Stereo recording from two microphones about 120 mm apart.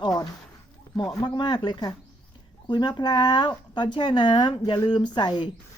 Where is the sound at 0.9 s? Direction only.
35° left (ahead or behind).